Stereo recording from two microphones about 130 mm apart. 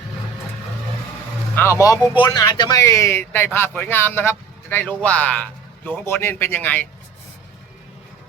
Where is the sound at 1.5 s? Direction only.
20° left (ahead or behind).